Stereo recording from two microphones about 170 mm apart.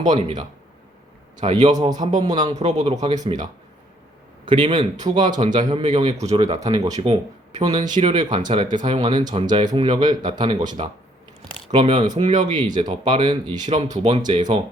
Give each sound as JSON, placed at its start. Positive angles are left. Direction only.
{"t": 0.1, "sound": "speech", "side_deg": -25}
{"t": 2.6, "sound": "a man's voice", "side_deg": -40}
{"t": 2.9, "sound": "speech", "side_deg": -25}
{"t": 11.7, "sound": "a man's voice", "side_deg": -40}
{"t": 12.2, "sound": "speech", "side_deg": -25}
{"t": 13.9, "sound": "speech", "side_deg": -45}
{"t": 14.2, "sound": "speech", "side_deg": -25}